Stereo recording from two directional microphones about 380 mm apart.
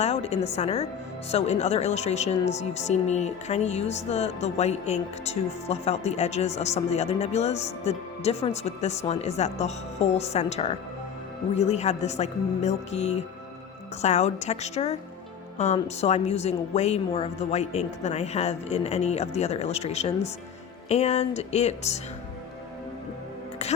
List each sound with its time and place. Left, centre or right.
0.0 s speech: centre